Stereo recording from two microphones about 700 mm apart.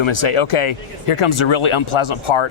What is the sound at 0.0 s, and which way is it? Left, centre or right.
Speech, left.